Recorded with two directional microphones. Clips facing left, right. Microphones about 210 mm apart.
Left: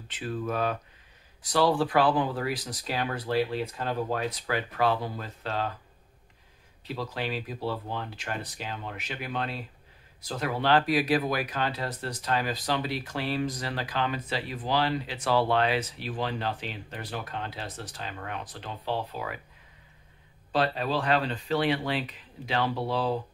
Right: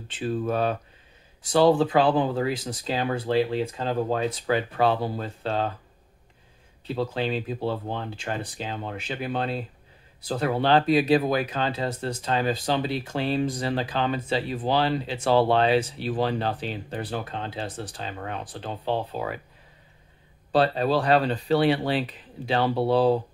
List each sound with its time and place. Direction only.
0.1 s speech: 30° right (ahead or behind)
6.9 s speech: 25° right (ahead or behind)
20.5 s speech: 35° right (ahead or behind)